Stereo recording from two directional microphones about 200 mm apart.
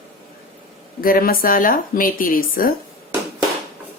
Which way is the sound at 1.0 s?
45° left (ahead or behind).